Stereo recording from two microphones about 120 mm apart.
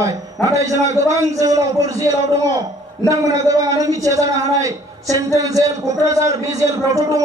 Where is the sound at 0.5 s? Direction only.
30° right (ahead or behind).